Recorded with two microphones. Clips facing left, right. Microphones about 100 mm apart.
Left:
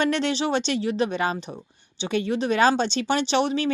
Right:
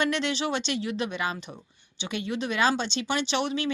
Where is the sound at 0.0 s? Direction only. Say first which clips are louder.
Left 4 dB; 40° left (ahead or behind).